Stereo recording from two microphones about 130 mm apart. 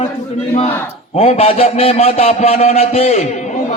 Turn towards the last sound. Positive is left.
turn(degrees=55)  # may be behind; listen again after turning